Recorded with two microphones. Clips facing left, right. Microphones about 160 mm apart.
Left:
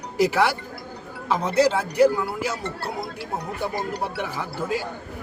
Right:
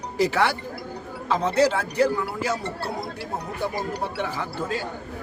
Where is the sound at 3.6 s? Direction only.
10° left (ahead or behind).